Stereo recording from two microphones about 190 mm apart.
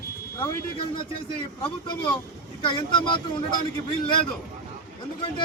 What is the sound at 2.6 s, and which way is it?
Speech, 25° left (ahead or behind).